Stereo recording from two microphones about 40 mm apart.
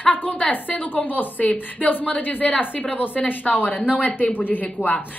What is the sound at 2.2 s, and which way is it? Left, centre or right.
A woman's voice, left.